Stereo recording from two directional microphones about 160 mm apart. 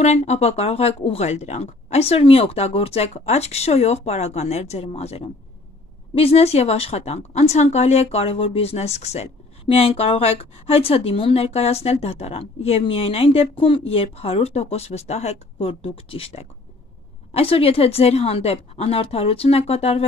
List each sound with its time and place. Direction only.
0.0 s a woman's voice: 45° left (ahead or behind)